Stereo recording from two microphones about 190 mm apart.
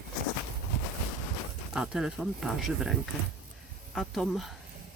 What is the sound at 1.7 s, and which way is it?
Speech, 5° right (ahead or behind).